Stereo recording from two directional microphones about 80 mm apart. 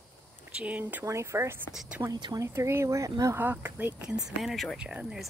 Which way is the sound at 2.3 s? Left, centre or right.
Right.